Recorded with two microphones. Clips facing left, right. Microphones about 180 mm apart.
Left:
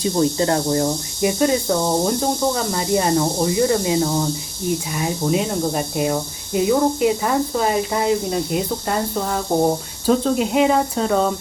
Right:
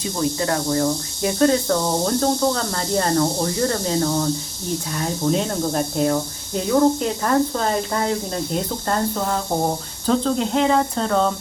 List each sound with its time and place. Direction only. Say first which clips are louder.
0.0 s speech: left 4 dB; 30° left (ahead or behind)
1.2 s speech: even; 10° left (ahead or behind)